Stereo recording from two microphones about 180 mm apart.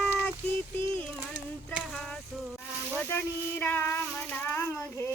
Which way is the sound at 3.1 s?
10° left (ahead or behind).